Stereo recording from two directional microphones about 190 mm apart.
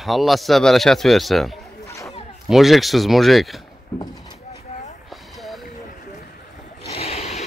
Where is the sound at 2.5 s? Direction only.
Centre (ahead or behind).